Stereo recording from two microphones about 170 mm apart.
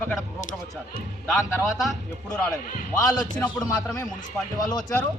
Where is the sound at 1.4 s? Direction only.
20° left (ahead or behind).